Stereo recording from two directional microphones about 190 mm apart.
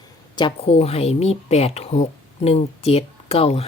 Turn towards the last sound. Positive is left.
turn(degrees=30)  # may be behind; listen again after turning